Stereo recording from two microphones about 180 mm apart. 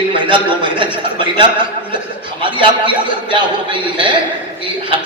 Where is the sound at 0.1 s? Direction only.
30° right (ahead or behind).